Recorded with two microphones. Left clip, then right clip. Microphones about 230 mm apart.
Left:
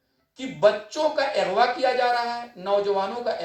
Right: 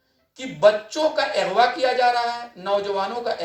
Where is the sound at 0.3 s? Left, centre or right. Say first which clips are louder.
Right 3 dB; right.